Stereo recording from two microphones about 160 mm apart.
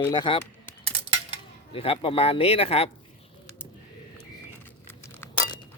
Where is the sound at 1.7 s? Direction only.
35° left (ahead or behind).